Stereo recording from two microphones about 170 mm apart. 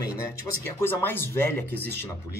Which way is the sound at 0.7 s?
15° left (ahead or behind).